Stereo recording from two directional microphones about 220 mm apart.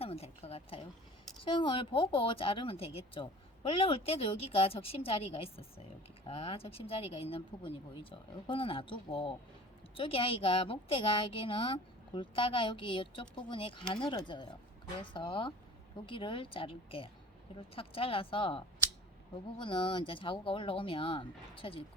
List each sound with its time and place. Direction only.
0.0 s a woman's voice: 25° left (ahead or behind)